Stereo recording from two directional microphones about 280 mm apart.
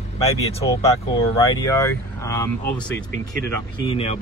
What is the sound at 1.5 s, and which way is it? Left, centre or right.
Speech, centre.